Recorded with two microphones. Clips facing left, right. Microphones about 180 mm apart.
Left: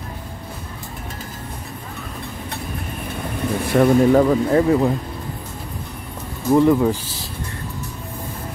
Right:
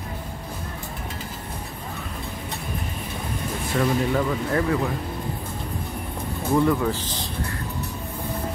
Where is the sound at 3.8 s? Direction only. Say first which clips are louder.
Left 9 dB; 45° left (ahead or behind).